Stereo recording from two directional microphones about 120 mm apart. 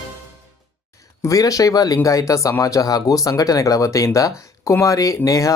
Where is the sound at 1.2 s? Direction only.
30° left (ahead or behind).